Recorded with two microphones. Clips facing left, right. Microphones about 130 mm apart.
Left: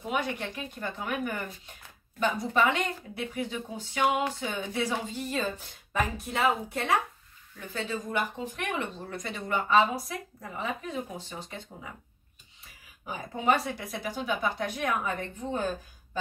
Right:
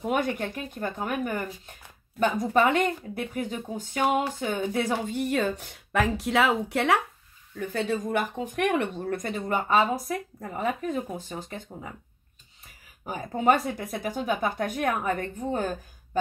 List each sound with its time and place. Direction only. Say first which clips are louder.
0.0 s speech: right 5 dB; 50° right (ahead or behind); by 7.0 s 80° right
7.5 s speech: right 6 dB; 60° right (ahead or behind); by 11.9 s 45° right (ahead or behind)
13.0 s speech: right 5 dB; 45° right (ahead or behind)